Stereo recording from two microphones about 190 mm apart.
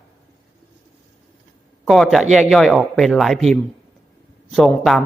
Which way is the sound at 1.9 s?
Centre (ahead or behind).